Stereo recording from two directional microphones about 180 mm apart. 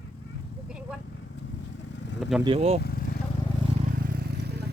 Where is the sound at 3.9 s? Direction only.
60° right (ahead or behind).